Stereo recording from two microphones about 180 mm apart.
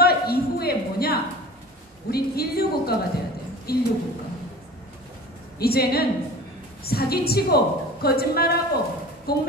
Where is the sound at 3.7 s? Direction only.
60° left (ahead or behind).